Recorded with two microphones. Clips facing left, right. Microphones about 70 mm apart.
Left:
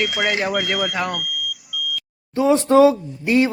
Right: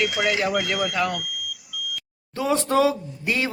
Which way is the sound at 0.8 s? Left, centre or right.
Centre.